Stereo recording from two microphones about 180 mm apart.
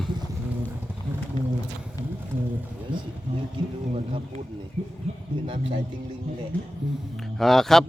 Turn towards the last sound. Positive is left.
turn(degrees=0)  # may be behind; listen again after turning